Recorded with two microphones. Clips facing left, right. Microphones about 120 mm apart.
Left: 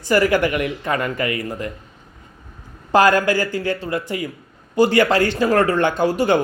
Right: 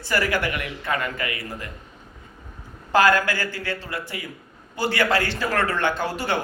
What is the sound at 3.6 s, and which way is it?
A man's voice, 20° left (ahead or behind).